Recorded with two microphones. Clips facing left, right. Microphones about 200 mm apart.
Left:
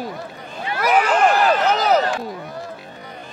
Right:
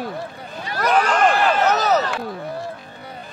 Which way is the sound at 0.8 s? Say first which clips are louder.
Left 1 dB; 10° left (ahead or behind).